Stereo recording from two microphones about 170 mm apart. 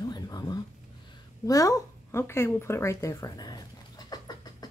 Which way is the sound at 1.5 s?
20° left (ahead or behind).